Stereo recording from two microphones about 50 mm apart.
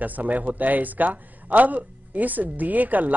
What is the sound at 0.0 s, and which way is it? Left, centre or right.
A man's voice, right.